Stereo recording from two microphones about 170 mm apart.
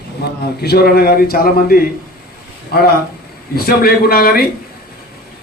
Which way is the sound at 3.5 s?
65° left (ahead or behind).